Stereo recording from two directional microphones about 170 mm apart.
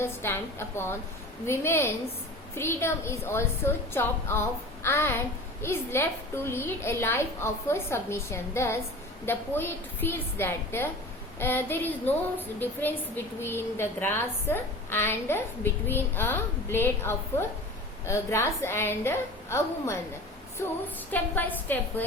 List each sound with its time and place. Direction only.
0.0 s a woman's voice: 15° left (ahead or behind)
21.1 s a woman's voice: 10° left (ahead or behind)